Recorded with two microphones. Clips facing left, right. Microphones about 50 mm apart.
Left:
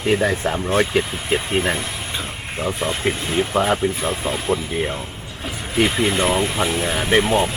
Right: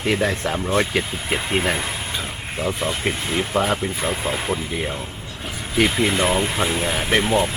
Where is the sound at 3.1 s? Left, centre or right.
Right.